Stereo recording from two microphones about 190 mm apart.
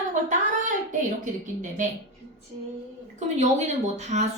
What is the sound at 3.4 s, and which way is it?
Speech, 35° right (ahead or behind).